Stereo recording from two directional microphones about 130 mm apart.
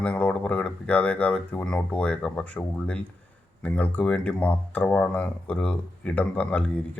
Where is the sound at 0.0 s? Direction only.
10° left (ahead or behind).